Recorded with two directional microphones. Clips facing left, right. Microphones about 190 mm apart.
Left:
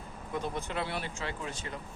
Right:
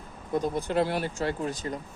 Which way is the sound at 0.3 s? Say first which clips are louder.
Right 9 dB; 40° right (ahead or behind).